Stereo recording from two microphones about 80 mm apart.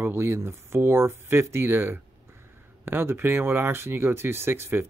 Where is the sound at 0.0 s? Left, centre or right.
Right.